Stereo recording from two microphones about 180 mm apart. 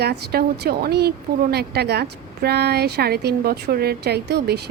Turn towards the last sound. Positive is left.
turn(degrees=-65)  # may be behind; listen again after turning